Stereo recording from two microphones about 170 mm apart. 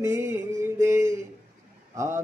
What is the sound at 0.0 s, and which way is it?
Music, 15° right (ahead or behind).